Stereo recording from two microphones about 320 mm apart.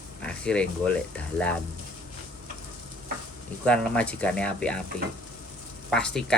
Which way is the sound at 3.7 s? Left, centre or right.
Centre.